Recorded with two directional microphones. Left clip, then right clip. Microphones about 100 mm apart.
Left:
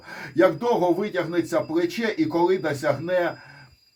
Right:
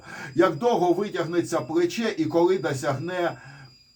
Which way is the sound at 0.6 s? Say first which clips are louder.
Even; 5° right (ahead or behind).